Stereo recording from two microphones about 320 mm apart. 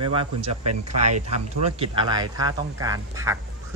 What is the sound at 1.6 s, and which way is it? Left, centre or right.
Speech, centre.